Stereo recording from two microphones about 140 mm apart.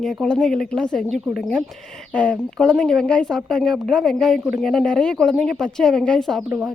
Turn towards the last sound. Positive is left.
turn(degrees=-20)  # may be behind; listen again after turning